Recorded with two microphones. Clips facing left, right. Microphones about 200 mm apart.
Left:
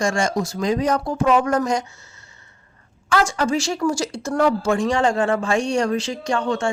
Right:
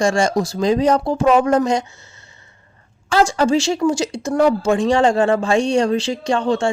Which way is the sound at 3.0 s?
30° right (ahead or behind).